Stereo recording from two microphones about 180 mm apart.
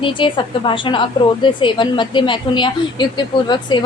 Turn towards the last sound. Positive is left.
turn(degrees=25)  # may be behind; listen again after turning